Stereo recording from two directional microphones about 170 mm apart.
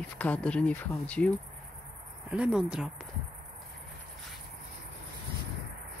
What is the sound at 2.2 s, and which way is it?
Speech, 5° right (ahead or behind).